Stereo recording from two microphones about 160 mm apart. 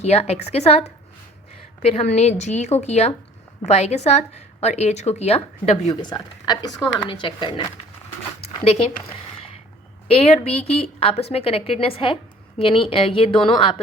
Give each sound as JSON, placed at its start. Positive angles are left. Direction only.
{"t": 0.0, "sound": "a woman's voice", "side_deg": 40}
{"t": 5.9, "sound": "a woman's voice", "side_deg": 25}
{"t": 8.4, "sound": "zipper", "side_deg": 40}
{"t": 10.1, "sound": "a woman's voice", "side_deg": 40}